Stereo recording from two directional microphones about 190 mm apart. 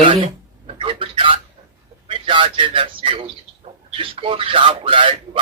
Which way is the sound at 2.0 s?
25° right (ahead or behind).